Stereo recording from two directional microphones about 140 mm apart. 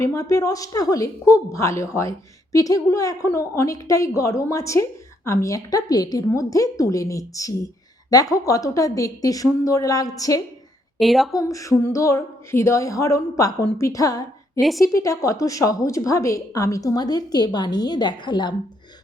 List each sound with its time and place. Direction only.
0.0 s a woman's voice: 20° left (ahead or behind)
11.0 s speech: centre (ahead or behind)
11.3 s a woman's voice: 25° left (ahead or behind)